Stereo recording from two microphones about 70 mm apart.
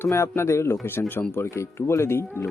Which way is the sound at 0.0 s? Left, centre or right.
Left.